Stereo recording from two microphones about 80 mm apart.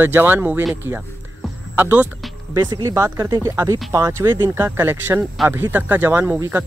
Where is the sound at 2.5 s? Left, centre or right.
Right.